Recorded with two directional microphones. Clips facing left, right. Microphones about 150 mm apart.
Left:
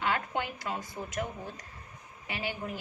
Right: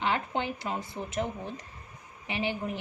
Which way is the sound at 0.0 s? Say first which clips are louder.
Right 2 dB; 25° right (ahead or behind).